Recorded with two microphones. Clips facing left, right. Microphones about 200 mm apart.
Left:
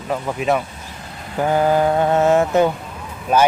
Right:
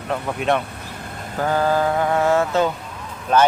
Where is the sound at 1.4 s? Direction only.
15° left (ahead or behind).